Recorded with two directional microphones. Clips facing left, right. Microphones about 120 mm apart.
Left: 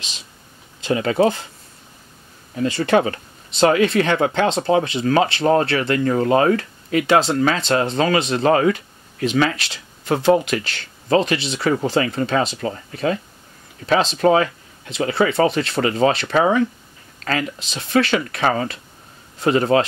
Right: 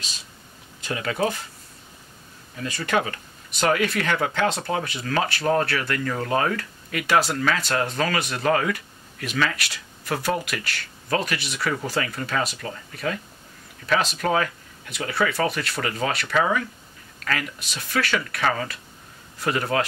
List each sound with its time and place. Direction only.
0.7 s speech: 25° left (ahead or behind)
2.5 s speech: 30° left (ahead or behind)